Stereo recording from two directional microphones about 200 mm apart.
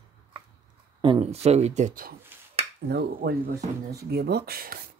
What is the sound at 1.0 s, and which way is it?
Speech, 30° right (ahead or behind).